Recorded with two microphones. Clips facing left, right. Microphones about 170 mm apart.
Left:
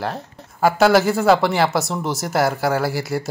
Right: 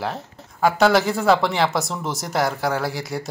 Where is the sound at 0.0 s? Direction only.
Centre (ahead or behind).